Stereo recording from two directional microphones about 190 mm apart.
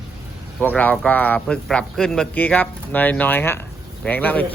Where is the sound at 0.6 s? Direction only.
10° left (ahead or behind).